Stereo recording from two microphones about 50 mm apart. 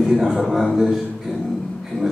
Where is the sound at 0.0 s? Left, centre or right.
Centre.